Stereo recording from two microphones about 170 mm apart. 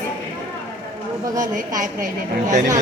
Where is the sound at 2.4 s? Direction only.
50° right (ahead or behind).